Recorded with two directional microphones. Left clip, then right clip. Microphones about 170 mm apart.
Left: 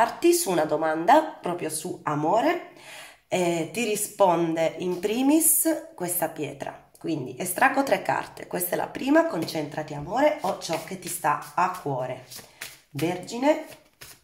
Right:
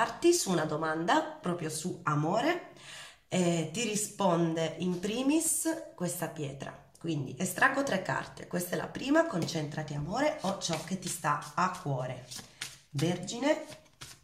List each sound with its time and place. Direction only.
0.0 s speech: 30° left (ahead or behind)